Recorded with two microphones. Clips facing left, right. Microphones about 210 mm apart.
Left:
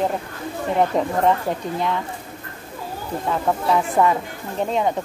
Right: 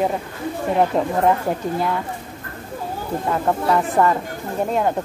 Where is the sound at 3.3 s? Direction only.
Centre (ahead or behind).